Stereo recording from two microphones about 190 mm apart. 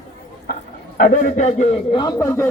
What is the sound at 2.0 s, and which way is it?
Speech, 15° left (ahead or behind).